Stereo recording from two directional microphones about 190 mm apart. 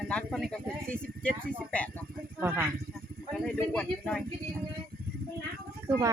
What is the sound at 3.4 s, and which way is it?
Speech, 5° left (ahead or behind).